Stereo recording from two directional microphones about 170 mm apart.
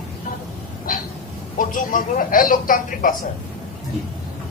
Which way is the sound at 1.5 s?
50° left (ahead or behind).